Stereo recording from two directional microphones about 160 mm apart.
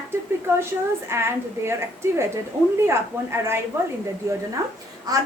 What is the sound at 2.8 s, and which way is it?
Speech, 15° right (ahead or behind).